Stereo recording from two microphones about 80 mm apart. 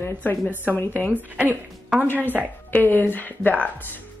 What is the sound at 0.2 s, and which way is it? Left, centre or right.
Speech, left.